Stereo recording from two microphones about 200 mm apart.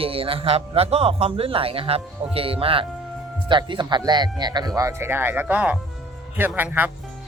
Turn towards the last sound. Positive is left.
turn(degrees=-10)  # may be behind; listen again after turning